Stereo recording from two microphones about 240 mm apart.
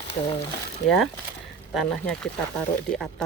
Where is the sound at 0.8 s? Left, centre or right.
Centre.